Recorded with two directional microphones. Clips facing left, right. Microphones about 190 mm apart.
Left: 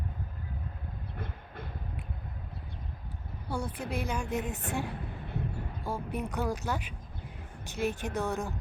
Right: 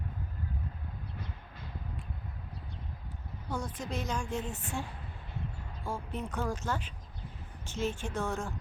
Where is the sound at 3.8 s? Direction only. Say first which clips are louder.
Left 2 dB; 10° left (ahead or behind).